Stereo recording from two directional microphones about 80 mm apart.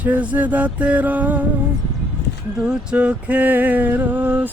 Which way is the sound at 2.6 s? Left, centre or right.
Centre.